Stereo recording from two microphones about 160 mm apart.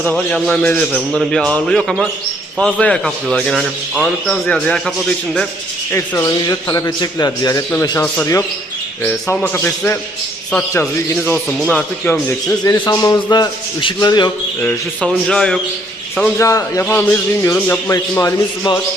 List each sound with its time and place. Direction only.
0.0 s a man's voice: 5° left (ahead or behind)
5.9 s a man's voice: 20° left (ahead or behind)
12.8 s a man's voice: 25° left (ahead or behind)
14.6 s a man's voice: 10° left (ahead or behind)
16.4 s a man's voice: 20° left (ahead or behind)